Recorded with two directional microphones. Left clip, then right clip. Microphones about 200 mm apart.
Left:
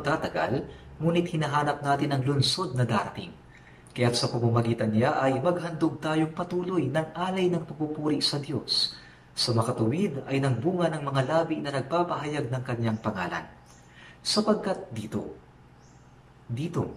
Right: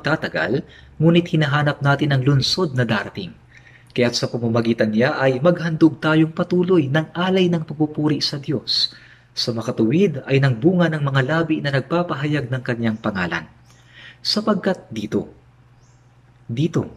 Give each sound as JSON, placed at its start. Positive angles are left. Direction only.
{"t": 0.0, "sound": "a man's voice", "side_deg": -45}
{"t": 9.7, "sound": "a man's voice", "side_deg": -55}